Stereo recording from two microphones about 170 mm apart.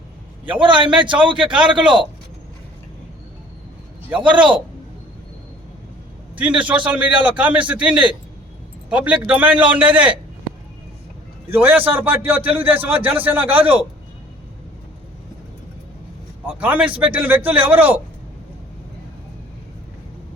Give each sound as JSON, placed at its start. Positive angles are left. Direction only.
{"t": 0.6, "sound": "a man's voice", "side_deg": -30}
{"t": 1.6, "sound": "a man's voice", "side_deg": -5}
{"t": 4.4, "sound": "a man's voice", "side_deg": -30}
{"t": 6.3, "sound": "a man's voice", "side_deg": -5}
{"t": 11.5, "sound": "a man's voice", "side_deg": -10}
{"t": 16.6, "sound": "a man's voice", "side_deg": -10}